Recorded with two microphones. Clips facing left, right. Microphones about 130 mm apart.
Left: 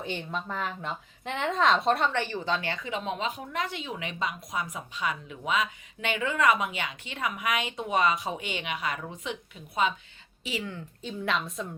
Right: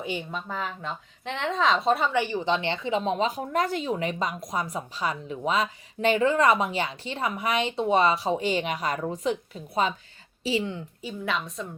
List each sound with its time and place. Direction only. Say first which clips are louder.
0.0 s speech: right 2 dB; 10° right (ahead or behind)
2.2 s speech: right 4 dB; 15° right (ahead or behind); by 9.9 s 35° right (ahead or behind)
10.4 s a woman's voice: right 7 dB; 25° right (ahead or behind)
11.0 s speech: even; centre (ahead or behind)